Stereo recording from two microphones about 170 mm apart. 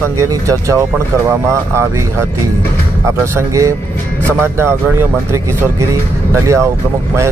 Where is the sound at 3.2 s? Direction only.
15° right (ahead or behind).